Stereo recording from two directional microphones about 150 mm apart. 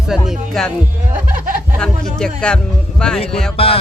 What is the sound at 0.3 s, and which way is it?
Speech, centre (ahead or behind).